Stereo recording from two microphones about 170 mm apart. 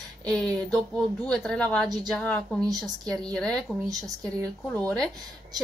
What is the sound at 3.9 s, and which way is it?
Speech, 20° right (ahead or behind).